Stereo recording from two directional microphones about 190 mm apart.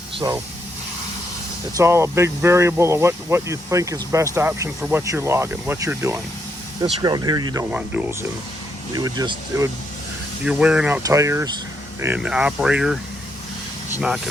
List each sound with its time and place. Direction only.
0.2 s speech: 15° right (ahead or behind)
1.7 s speech: 15° right (ahead or behind)
9.0 s speech: 20° right (ahead or behind)
10.4 s speech: 5° right (ahead or behind)
12.0 s speech: 5° right (ahead or behind)